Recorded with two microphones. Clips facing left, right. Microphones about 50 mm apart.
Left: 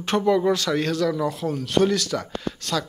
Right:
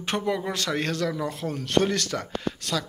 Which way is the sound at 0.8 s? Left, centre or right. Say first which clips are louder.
Left 4 dB; right.